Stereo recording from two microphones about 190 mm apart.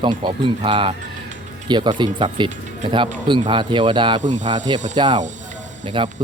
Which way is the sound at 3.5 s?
25° right (ahead or behind).